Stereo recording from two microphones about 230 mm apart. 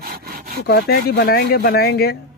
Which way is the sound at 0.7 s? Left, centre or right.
Left.